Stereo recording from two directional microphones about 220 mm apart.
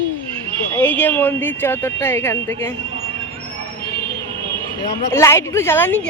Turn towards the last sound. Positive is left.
turn(degrees=10)  # may be behind; listen again after turning